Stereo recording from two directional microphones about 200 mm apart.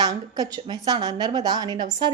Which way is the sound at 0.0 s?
20° right (ahead or behind).